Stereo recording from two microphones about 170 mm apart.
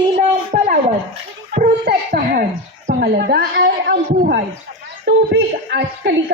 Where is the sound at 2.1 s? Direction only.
55° right (ahead or behind).